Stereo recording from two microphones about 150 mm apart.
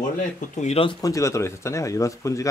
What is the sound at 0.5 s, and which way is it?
Speech, 50° left (ahead or behind).